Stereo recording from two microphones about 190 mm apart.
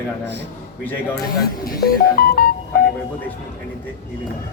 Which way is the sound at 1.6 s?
50° left (ahead or behind).